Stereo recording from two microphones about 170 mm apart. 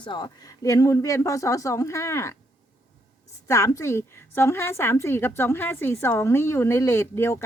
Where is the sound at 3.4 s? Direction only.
15° left (ahead or behind).